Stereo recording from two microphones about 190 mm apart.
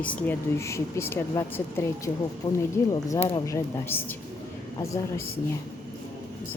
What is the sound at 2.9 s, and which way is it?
Speech, 15° left (ahead or behind).